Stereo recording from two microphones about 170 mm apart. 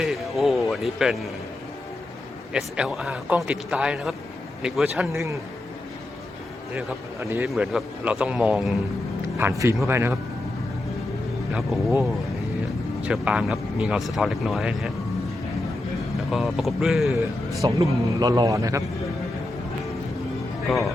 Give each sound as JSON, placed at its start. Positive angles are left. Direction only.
{"t": 0.0, "sound": "a sound", "side_deg": 0}
{"t": 2.5, "sound": "speech", "side_deg": -5}
{"t": 5.1, "sound": "speech", "side_deg": -15}
{"t": 7.2, "sound": "speech", "side_deg": -15}
{"t": 7.4, "sound": "speech", "side_deg": 0}
{"t": 9.4, "sound": "speech", "side_deg": -15}
{"t": 11.5, "sound": "speech", "side_deg": 0}
{"t": 13.0, "sound": "speech", "side_deg": -5}
{"t": 16.3, "sound": "speech", "side_deg": 0}
{"t": 17.2, "sound": "a man's voice", "side_deg": -20}
{"t": 20.7, "sound": "speech", "side_deg": 0}